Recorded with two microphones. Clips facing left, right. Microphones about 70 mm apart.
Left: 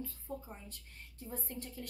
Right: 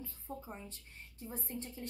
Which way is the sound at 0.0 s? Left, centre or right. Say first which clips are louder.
Left 2 dB; right.